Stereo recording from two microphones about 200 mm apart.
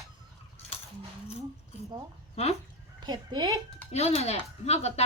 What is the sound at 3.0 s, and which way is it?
Speech, 20° right (ahead or behind).